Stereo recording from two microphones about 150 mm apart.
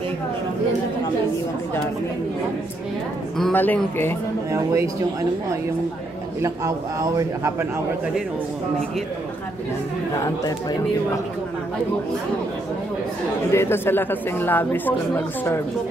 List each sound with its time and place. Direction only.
3.3 s speech: 5° left (ahead or behind)
4.5 s a man's voice: 20° right (ahead or behind)
6.4 s a man's voice: 20° right (ahead or behind)
13.5 s speech: 15° left (ahead or behind)